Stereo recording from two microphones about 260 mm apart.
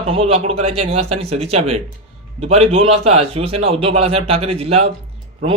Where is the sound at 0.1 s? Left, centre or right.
Right.